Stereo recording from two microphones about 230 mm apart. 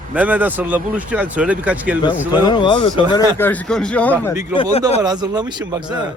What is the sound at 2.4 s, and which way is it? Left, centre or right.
Speech, centre.